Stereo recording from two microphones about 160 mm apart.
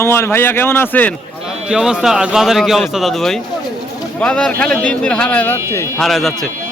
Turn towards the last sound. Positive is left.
turn(degrees=0)  # may be behind; listen again after turning